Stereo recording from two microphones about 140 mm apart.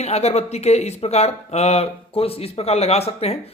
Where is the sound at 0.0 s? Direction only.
50° left (ahead or behind).